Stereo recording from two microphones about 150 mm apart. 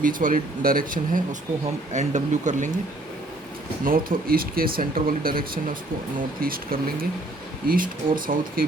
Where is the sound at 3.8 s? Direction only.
70° right (ahead or behind).